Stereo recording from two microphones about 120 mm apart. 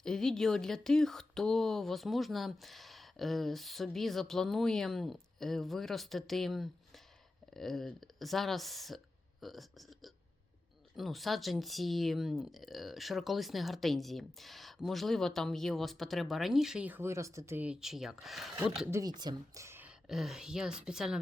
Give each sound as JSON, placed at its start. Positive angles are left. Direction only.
{"t": 0.0, "sound": "speech", "side_deg": 5}
{"t": 17.6, "sound": "speech", "side_deg": -5}
{"t": 19.0, "sound": "speech", "side_deg": -35}
{"t": 19.6, "sound": "a sound", "side_deg": -20}
{"t": 19.9, "sound": "speech", "side_deg": -5}